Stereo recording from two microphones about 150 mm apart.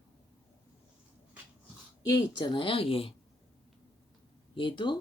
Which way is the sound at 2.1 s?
25° left (ahead or behind).